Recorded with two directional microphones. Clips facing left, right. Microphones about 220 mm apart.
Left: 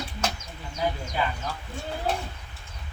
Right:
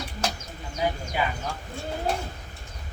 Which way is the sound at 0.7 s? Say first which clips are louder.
Right 1 dB; 15° right (ahead or behind).